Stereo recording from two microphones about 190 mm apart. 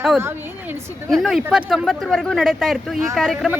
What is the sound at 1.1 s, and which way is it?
A woman's voice, centre (ahead or behind).